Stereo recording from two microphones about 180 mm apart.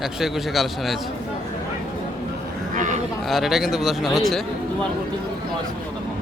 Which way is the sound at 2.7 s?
45° right (ahead or behind).